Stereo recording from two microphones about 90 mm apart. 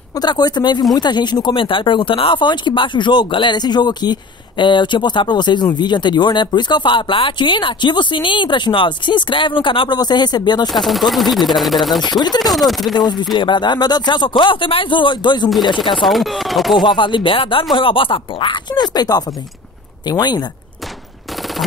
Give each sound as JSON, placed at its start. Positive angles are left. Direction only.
{"t": 0.1, "sound": "speech", "side_deg": 50}
{"t": 9.9, "sound": "speech", "side_deg": 55}
{"t": 10.7, "sound": "speech", "side_deg": 0}
{"t": 12.1, "sound": "speech", "side_deg": 50}
{"t": 12.4, "sound": "speech", "side_deg": 0}
{"t": 12.9, "sound": "speech", "side_deg": 55}
{"t": 16.0, "sound": "speech", "side_deg": 0}
{"t": 16.8, "sound": "speech", "side_deg": 60}